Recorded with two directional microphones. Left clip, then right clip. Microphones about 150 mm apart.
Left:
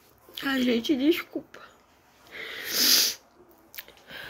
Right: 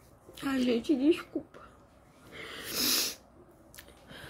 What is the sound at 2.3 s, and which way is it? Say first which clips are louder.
Wheeze: left 7 dB; 15° right (ahead or behind).